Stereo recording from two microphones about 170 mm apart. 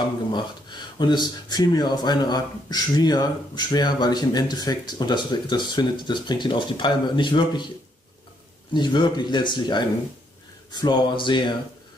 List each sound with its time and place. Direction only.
0.3 s speech: 25° left (ahead or behind)
8.7 s speech: 25° left (ahead or behind)